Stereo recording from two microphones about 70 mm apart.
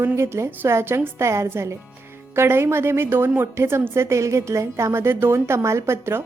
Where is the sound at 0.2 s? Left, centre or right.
Right.